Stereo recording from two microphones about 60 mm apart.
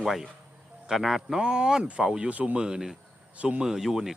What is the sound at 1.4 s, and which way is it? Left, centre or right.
Speech, centre.